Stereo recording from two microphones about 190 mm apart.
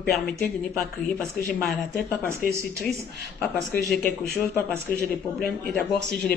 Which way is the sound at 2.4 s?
50° left (ahead or behind).